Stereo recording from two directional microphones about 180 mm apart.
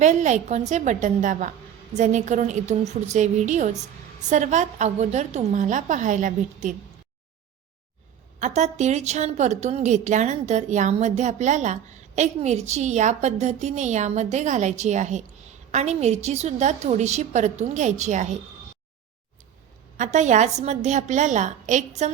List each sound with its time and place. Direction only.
0.0 s a woman's voice: 40° right (ahead or behind)
8.4 s a woman's voice: 40° right (ahead or behind)
20.0 s a woman's voice: 40° right (ahead or behind)